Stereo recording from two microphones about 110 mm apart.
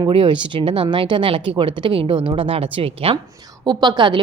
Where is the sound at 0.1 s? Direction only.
50° right (ahead or behind).